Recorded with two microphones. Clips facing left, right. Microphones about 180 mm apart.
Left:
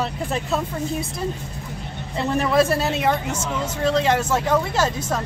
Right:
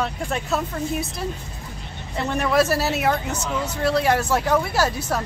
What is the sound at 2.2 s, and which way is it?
Speech, centre (ahead or behind).